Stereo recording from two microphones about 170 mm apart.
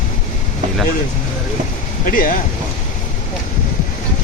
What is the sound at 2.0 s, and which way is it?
Speech, 55° left (ahead or behind).